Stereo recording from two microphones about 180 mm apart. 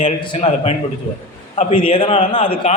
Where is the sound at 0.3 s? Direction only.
35° left (ahead or behind).